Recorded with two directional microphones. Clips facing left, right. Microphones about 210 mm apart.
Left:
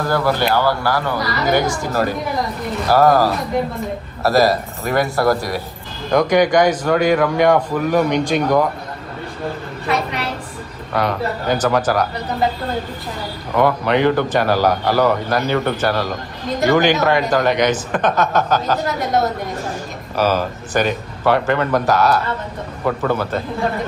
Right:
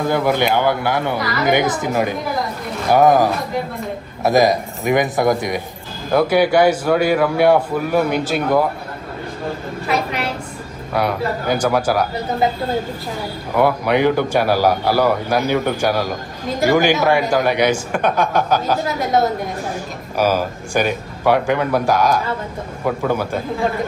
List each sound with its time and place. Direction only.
0.0 s a man's voice: 20° right (ahead or behind)
6.1 s a man's voice: 5° right (ahead or behind)
9.8 s a woman's voice: centre (ahead or behind)
13.6 s a man's voice: 10° right (ahead or behind)